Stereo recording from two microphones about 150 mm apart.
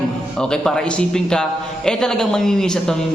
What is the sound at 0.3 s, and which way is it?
A man's voice, 5° left (ahead or behind).